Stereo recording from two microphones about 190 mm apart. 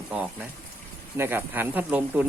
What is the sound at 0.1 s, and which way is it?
Speech, 5° right (ahead or behind).